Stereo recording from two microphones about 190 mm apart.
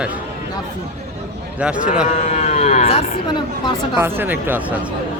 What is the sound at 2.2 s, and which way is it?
Speech, 40° left (ahead or behind).